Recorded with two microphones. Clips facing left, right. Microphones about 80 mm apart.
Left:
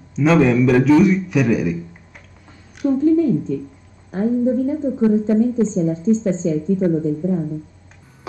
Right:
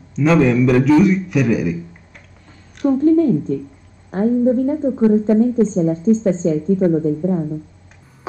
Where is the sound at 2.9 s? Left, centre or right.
Right.